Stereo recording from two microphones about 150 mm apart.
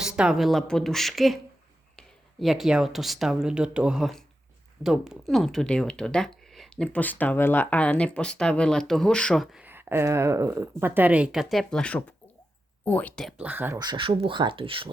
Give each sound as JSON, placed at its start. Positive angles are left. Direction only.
{"t": 0.0, "sound": "speech", "side_deg": -5}
{"t": 9.6, "sound": "a woman's voice", "side_deg": -15}
{"t": 13.3, "sound": "a woman's voice", "side_deg": -10}
{"t": 13.7, "sound": "speech", "side_deg": -30}